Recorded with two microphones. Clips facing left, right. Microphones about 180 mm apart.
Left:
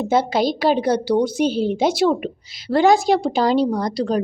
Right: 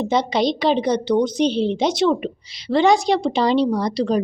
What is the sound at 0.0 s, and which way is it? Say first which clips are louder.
Speech: left 1 dB; 5° left (ahead or behind).